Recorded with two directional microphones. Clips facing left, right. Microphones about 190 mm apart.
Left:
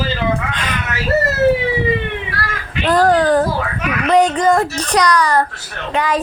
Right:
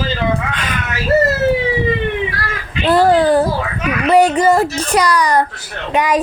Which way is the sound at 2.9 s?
10° right (ahead or behind).